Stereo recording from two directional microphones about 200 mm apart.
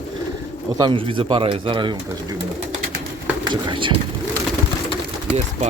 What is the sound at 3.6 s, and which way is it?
Speech, 25° right (ahead or behind).